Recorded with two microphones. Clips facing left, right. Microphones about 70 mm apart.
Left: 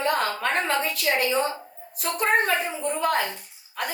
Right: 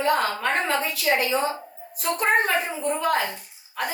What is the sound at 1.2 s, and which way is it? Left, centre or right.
A woman's voice, centre.